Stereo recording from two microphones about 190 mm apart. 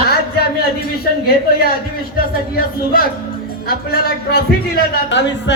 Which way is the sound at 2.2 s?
50° left (ahead or behind).